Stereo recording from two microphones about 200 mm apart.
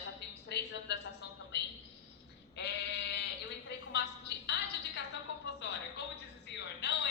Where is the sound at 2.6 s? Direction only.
55° left (ahead or behind).